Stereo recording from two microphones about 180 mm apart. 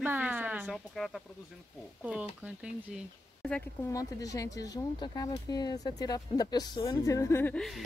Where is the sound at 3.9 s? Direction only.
20° left (ahead or behind).